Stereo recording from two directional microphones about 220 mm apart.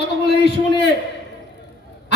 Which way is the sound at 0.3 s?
50° left (ahead or behind).